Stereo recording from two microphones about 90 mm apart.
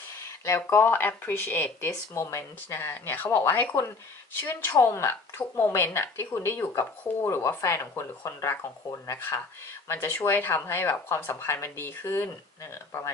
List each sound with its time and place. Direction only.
0.2 s speech: 25° left (ahead or behind)